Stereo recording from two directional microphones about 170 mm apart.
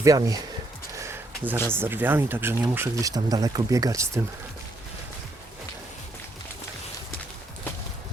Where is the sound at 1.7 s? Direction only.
15° right (ahead or behind).